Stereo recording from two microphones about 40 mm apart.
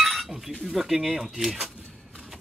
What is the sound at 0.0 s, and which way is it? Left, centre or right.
Chink, centre.